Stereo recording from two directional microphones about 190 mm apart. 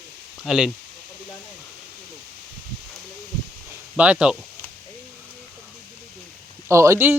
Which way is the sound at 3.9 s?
5° right (ahead or behind).